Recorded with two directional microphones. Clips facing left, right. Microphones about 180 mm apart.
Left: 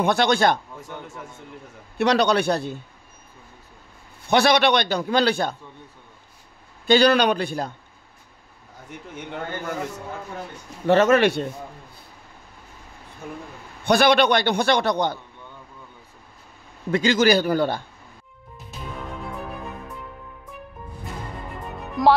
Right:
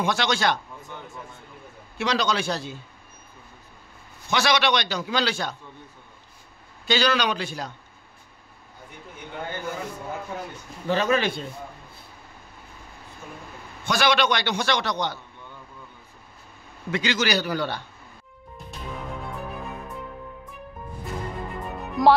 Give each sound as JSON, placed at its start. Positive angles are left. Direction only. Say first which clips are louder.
{"t": 0.0, "sound": "a man's voice", "louder": "left 5 dB", "side_deg": 55}
{"t": 2.0, "sound": "a man's voice", "louder": "left 6 dB", "side_deg": 60}
{"t": 4.3, "sound": "a man's voice", "louder": "left 5 dB", "side_deg": 55}
{"t": 6.9, "sound": "a man's voice", "louder": "left 6 dB", "side_deg": 55}
{"t": 10.9, "sound": "a man's voice", "louder": "left 7 dB", "side_deg": 65}
{"t": 13.8, "sound": "a man's voice", "louder": "left 5 dB", "side_deg": 55}
{"t": 16.9, "sound": "a man's voice", "louder": "left 7 dB", "side_deg": 45}
{"t": 22.0, "sound": "music", "louder": "even", "side_deg": 0}